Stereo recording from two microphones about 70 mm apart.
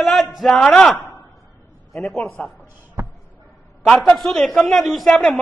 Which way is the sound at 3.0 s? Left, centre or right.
Right.